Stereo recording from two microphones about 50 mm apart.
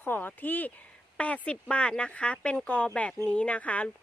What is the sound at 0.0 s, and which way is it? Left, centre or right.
Speech, left.